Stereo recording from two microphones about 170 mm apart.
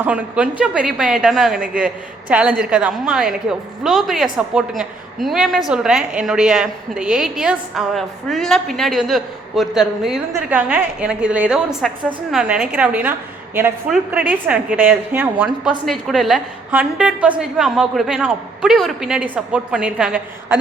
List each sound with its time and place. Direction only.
0.0 s a woman's voice: 5° right (ahead or behind)